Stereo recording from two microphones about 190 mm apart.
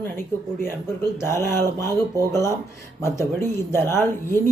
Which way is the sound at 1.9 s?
20° right (ahead or behind).